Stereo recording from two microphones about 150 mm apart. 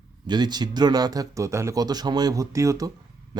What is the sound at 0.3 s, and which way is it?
Speech, 30° right (ahead or behind).